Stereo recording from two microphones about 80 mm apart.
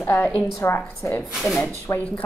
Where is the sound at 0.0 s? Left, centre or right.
Left.